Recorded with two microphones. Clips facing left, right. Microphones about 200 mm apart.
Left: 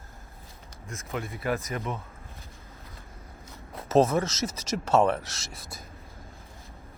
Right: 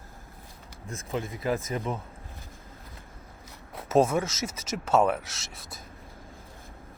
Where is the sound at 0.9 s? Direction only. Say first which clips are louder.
Right 2 dB; 30° right (ahead or behind).